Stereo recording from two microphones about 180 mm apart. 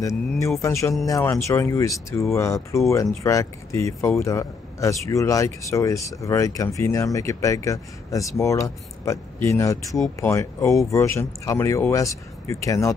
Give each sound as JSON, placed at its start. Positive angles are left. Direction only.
{"t": 0.6, "sound": "speech", "side_deg": 15}